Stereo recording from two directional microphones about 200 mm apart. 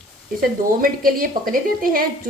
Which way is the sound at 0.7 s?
45° right (ahead or behind).